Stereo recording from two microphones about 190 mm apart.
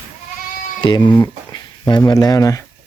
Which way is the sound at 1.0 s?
10° left (ahead or behind).